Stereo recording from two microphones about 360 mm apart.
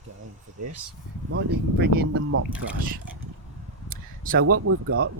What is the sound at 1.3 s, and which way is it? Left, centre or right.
Speech, right.